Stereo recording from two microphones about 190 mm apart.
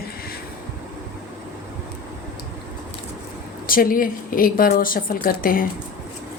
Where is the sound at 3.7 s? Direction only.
50° left (ahead or behind).